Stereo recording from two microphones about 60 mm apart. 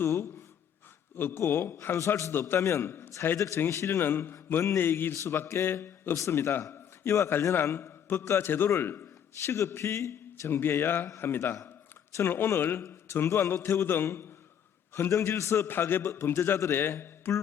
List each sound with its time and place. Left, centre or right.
0.0 s a man's voice: left
2.3 s a man's voice: left
2.6 s a man's voice: left
3.3 s speech: left
3.7 s a man's voice: left
6.1 s a man's voice: left
6.4 s a man's voice: left
8.4 s a man's voice: left
9.5 s a man's voice: left
10.6 s a man's voice: left
13.2 s speech: left
13.5 s a man's voice: left
15.2 s a man's voice: left
15.6 s a man's voice: left